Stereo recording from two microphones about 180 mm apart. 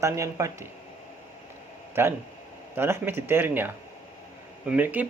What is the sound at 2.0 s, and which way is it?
Speech, 15° right (ahead or behind).